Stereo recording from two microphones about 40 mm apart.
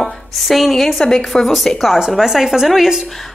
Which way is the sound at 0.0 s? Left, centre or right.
Centre.